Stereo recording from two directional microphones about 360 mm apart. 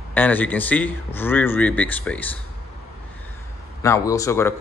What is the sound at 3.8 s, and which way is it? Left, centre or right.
Speech, centre.